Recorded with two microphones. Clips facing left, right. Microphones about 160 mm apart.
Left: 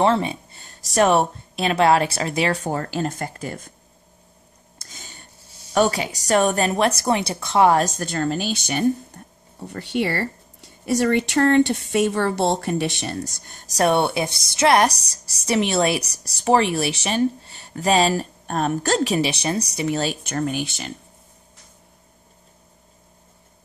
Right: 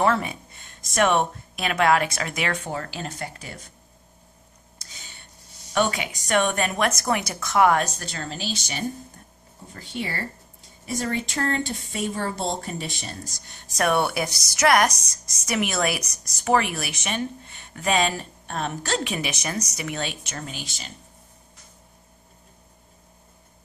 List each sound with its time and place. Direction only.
0.0 s a sound: 25° left (ahead or behind)
0.9 s speech: 35° left (ahead or behind)
2.6 s speech: 45° left (ahead or behind)
4.7 s a woman's voice: 45° left (ahead or behind); by 7.8 s 30° left (ahead or behind)
7.8 s speech: 50° left (ahead or behind)
9.7 s speech: 70° left (ahead or behind)
13.5 s speech: 45° left (ahead or behind)
13.8 s a woman's voice: 25° left (ahead or behind)
20.2 s speech: 55° left (ahead or behind)